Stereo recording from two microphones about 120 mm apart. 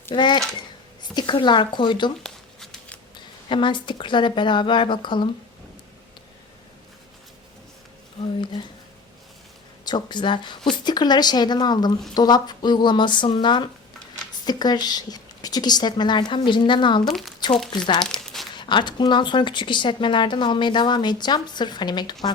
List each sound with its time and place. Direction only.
0.1 s speech: 40° left (ahead or behind)
2.2 s a sound: 5° left (ahead or behind)
3.2 s speech: 40° left (ahead or behind)
9.8 s speech: 40° left (ahead or behind)
17.1 s speech: centre (ahead or behind)
17.7 s speech: 35° left (ahead or behind)
18.0 s crumpling: 5° left (ahead or behind)
18.5 s speech: 40° left (ahead or behind)